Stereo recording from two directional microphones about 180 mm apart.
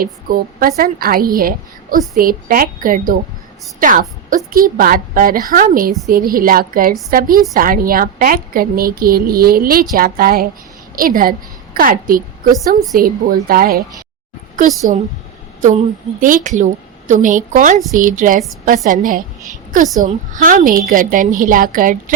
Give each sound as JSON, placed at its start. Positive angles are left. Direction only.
{"t": 0.0, "sound": "a woman's voice", "side_deg": -55}
{"t": 12.5, "sound": "a woman's voice", "side_deg": 0}
{"t": 13.0, "sound": "a woman's voice", "side_deg": -50}
{"t": 16.2, "sound": "a woman's voice", "side_deg": -45}